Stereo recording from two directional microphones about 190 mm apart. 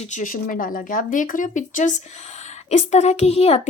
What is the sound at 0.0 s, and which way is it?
Speech, 40° left (ahead or behind).